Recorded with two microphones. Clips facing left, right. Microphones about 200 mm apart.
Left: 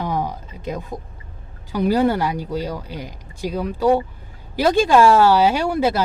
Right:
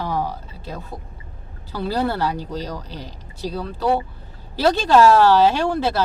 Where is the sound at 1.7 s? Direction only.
15° left (ahead or behind).